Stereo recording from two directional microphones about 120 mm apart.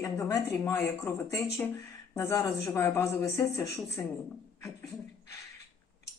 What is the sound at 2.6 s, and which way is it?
Speech, 20° left (ahead or behind).